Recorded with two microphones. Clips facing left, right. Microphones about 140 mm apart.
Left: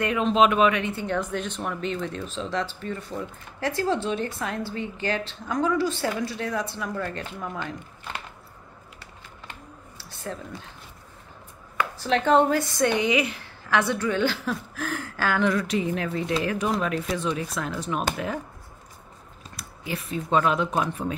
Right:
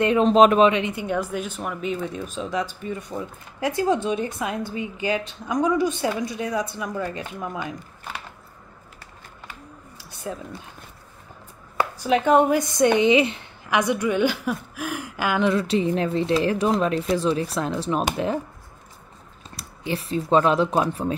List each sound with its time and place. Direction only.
0.0 s speech: 30° right (ahead or behind)
0.7 s speech: 20° right (ahead or behind)
9.9 s a sound: 15° right (ahead or behind)
12.0 s speech: 10° right (ahead or behind)
19.5 s speech: 30° right (ahead or behind)